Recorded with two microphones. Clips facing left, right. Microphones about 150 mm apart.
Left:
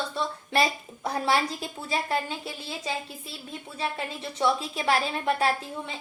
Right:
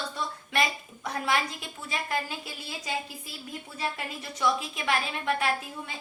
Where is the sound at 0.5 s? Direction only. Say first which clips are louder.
Left 3 dB; 30° left (ahead or behind).